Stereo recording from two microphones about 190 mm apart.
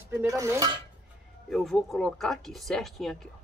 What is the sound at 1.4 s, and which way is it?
Speech, centre (ahead or behind).